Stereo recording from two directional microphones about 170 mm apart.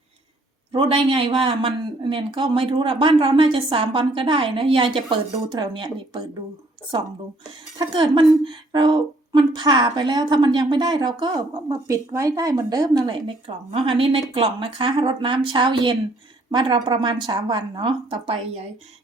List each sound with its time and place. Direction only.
0.7 s speech: 30° right (ahead or behind)
7.8 s a woman's voice: 25° right (ahead or behind)